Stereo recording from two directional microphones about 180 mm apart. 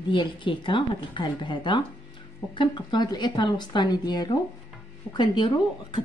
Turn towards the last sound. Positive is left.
turn(degrees=25)  # may be behind; listen again after turning